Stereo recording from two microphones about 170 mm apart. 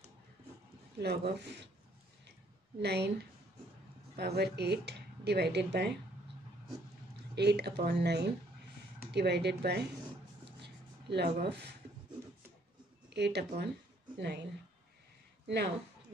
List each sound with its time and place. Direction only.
0.9 s speech: 75° right (ahead or behind); by 1.7 s 90° right
2.8 s speech: 75° right (ahead or behind)
7.3 s speech: 75° right (ahead or behind)
10.6 s a sound: 75° right (ahead or behind)
11.4 s speech: 85° right
13.1 s speech: 80° right
15.4 s a woman's voice: 80° right